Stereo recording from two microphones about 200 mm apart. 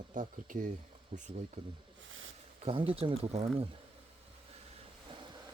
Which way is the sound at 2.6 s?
30° right (ahead or behind).